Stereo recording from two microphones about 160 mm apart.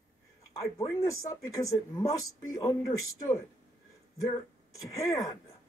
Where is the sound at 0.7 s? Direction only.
20° left (ahead or behind).